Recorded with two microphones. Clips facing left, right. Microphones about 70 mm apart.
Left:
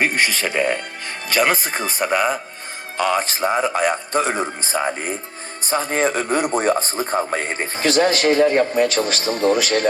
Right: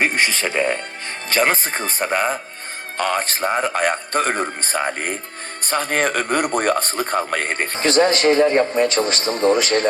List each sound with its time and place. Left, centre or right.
0.0 s a man's voice: right
7.8 s a man's voice: right